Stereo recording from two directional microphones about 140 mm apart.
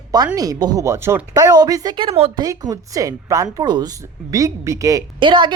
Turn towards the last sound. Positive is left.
turn(degrees=-35)  # may be behind; listen again after turning